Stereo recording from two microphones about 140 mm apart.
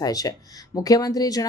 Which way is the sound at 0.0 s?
25° left (ahead or behind).